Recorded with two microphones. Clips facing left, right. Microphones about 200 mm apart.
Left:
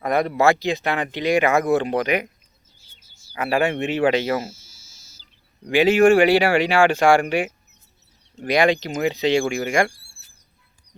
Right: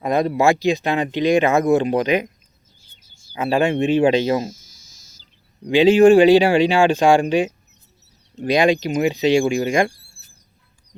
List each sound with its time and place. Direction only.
0.0 s speech: 20° right (ahead or behind)
3.3 s speech: 20° right (ahead or behind)
4.4 s a sound: 5° left (ahead or behind)
5.6 s speech: 15° right (ahead or behind)